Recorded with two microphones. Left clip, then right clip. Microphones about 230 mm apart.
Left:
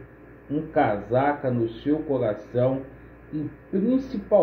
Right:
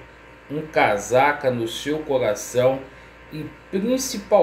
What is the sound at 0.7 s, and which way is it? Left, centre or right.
Speech, centre.